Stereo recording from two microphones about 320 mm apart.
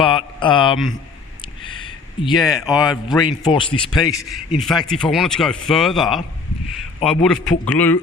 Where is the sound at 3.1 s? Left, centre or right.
Centre.